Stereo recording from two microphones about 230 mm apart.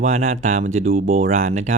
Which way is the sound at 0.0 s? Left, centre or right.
Right.